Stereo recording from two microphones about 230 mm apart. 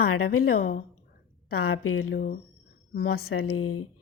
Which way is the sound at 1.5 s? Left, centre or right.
Left.